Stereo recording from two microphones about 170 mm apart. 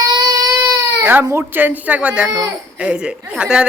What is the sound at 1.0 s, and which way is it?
A woman's voice, 10° right (ahead or behind).